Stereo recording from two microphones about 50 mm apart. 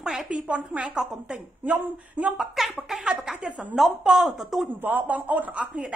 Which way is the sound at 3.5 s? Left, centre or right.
Right.